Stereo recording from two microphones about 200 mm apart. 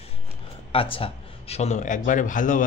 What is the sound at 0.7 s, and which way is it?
Speech, 25° left (ahead or behind).